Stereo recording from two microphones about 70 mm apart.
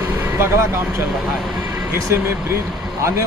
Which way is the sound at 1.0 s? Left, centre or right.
Centre.